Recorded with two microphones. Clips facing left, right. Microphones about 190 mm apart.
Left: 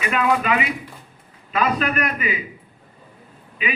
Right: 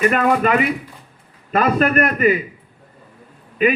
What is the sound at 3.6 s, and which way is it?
Speech, 45° right (ahead or behind).